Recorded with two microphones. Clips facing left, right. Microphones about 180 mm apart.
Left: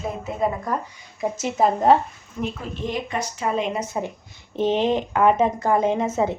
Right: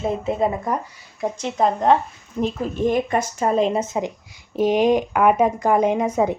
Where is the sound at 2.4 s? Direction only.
40° right (ahead or behind).